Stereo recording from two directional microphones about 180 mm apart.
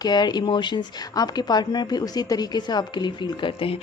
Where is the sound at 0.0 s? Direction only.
25° left (ahead or behind).